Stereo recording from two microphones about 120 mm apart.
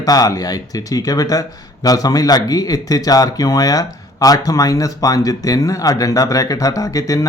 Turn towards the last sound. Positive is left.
turn(degrees=30)  # may be behind; listen again after turning